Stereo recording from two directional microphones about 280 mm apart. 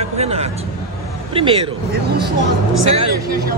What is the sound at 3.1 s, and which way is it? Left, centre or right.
Speech, right.